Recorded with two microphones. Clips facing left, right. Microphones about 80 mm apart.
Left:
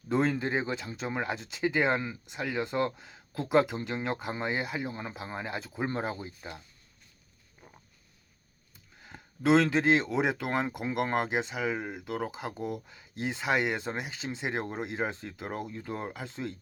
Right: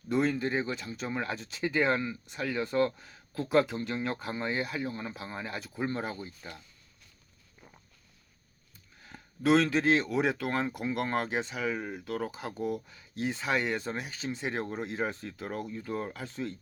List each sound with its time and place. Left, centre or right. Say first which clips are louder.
0.1 s speech: left 1 dB; left
1.0 s speech: left 1 dB; centre
9.0 s a sound: left 1 dB; left
10.2 s speech: even; centre
14.2 s speech: right 1 dB; left
14.4 s speech: left 1 dB; centre
15.1 s speech: even; left
15.4 s speech: even; centre